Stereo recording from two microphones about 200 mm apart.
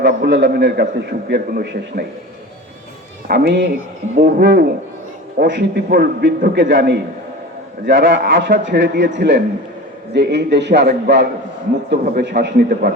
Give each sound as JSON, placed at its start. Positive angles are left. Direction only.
{"t": 0.3, "sound": "a man's voice", "side_deg": -65}
{"t": 3.2, "sound": "a man's voice", "side_deg": -55}
{"t": 4.1, "sound": "a man's voice", "side_deg": -45}
{"t": 5.4, "sound": "a man's voice", "side_deg": -60}